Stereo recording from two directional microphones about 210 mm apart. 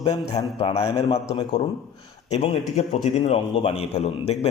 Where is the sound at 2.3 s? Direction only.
30° left (ahead or behind).